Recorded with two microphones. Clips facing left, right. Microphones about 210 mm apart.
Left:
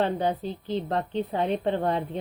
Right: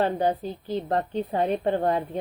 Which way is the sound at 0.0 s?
45° right (ahead or behind).